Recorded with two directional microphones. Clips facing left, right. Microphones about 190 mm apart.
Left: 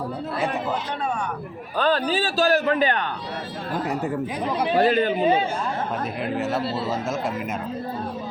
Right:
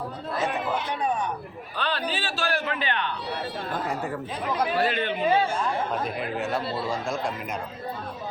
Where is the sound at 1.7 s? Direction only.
45° left (ahead or behind).